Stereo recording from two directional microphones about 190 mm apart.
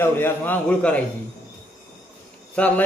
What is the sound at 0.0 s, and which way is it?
A man's voice, 10° left (ahead or behind).